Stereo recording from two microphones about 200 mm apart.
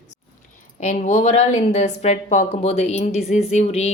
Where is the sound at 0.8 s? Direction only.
35° left (ahead or behind).